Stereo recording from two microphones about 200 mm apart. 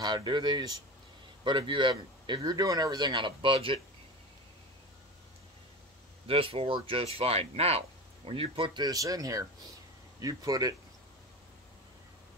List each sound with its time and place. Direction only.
0.0 s speech: 20° right (ahead or behind)
6.2 s speech: 30° right (ahead or behind)